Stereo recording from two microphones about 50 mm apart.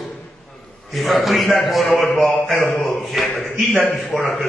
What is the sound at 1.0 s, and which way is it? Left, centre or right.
A man's voice, centre.